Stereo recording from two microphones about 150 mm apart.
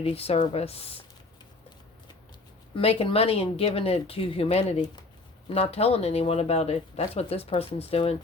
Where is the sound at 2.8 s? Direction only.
40° left (ahead or behind).